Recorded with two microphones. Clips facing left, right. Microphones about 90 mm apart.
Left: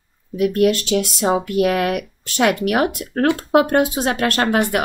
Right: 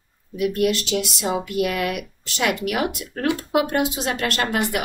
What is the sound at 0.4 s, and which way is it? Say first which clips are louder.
A woman's voice: left 5 dB; 50° left (ahead or behind).